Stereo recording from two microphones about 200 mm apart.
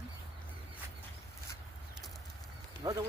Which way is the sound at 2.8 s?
20° right (ahead or behind).